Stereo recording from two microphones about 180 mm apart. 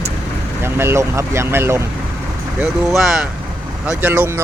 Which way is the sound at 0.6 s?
15° right (ahead or behind).